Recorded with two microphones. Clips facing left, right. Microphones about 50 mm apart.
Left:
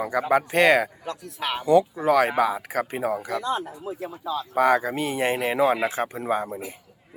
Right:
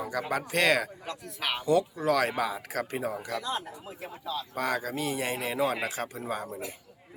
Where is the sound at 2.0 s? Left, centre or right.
Centre.